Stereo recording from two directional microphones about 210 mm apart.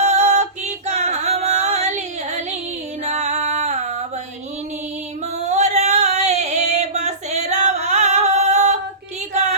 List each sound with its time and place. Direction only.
0.0 s music: 30° right (ahead or behind)
5.4 s female singing: 30° right (ahead or behind)